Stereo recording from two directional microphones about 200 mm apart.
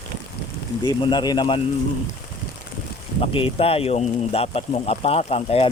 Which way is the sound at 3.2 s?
25° left (ahead or behind).